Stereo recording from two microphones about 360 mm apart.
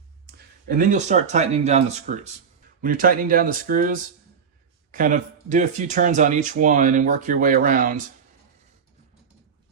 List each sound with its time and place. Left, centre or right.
0.3 s speech: right